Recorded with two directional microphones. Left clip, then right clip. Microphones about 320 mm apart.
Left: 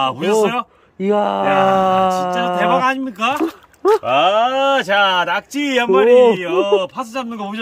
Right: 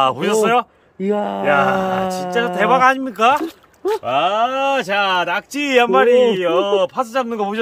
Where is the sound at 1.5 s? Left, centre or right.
Centre.